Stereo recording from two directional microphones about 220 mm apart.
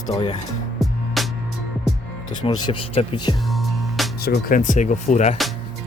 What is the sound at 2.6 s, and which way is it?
Speech, 25° left (ahead or behind).